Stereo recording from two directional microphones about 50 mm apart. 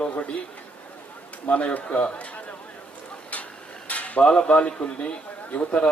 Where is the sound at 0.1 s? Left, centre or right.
Left.